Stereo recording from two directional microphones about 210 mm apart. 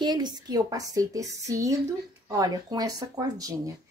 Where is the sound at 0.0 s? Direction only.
20° right (ahead or behind).